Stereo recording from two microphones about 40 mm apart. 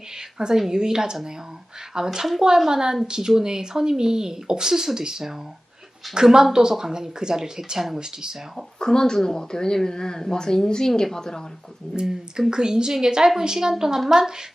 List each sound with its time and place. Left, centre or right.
0.3 s a woman's voice: centre
8.8 s speech: centre
12.5 s speech: centre